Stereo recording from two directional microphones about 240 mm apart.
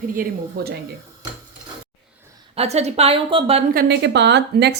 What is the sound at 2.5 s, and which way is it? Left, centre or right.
A woman's voice, right.